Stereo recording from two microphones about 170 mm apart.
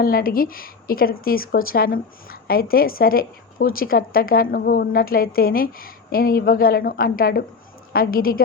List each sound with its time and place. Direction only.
0.0 s speech: 60° left (ahead or behind)